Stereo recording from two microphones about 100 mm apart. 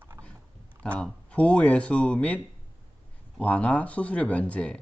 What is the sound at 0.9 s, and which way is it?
Speech, 10° left (ahead or behind).